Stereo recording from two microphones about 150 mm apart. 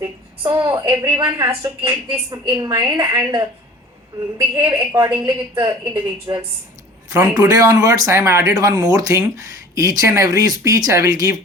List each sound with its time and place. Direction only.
0.4 s speech: 25° right (ahead or behind)
1.4 s speech: 20° right (ahead or behind)
4.9 s speech: 25° right (ahead or behind)